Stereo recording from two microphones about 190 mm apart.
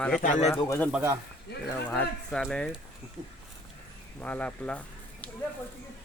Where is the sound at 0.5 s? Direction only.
15° left (ahead or behind).